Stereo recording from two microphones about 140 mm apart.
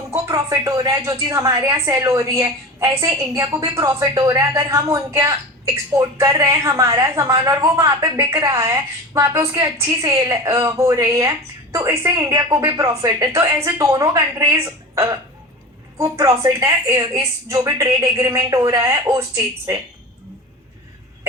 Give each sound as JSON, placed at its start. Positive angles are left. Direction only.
{"t": 0.1, "sound": "a woman's voice", "side_deg": -25}